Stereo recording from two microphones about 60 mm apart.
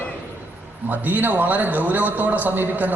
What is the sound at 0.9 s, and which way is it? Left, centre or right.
A man's voice, right.